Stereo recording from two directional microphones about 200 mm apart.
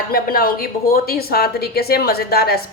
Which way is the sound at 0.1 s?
50° left (ahead or behind).